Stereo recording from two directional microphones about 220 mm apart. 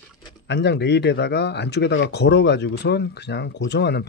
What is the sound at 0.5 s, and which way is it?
Speech, 50° left (ahead or behind).